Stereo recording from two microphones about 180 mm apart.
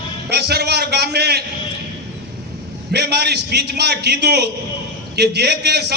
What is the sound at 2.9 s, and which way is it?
A man's voice, 65° right (ahead or behind).